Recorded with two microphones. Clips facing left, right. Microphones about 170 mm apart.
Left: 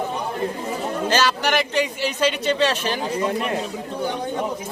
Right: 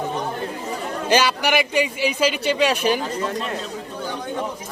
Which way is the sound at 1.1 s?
10° right (ahead or behind).